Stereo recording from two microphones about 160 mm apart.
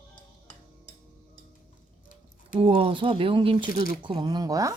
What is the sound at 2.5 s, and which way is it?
Speech, 35° right (ahead or behind).